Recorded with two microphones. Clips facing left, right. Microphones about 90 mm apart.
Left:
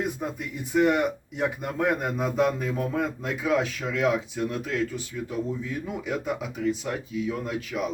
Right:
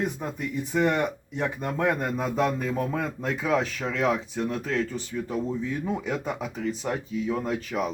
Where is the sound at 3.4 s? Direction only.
35° right (ahead or behind).